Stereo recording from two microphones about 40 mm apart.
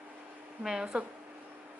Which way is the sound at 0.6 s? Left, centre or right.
Centre.